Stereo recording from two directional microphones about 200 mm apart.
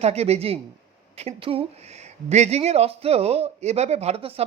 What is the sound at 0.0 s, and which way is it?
Speech, 30° right (ahead or behind).